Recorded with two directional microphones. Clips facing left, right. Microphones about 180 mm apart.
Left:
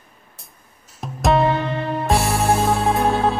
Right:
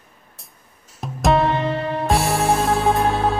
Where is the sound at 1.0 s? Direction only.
Centre (ahead or behind).